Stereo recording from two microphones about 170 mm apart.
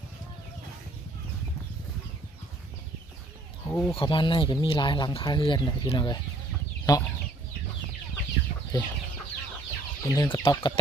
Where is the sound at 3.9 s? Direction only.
30° left (ahead or behind).